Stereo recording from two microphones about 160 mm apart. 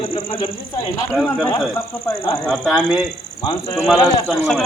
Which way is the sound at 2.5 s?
Centre (ahead or behind).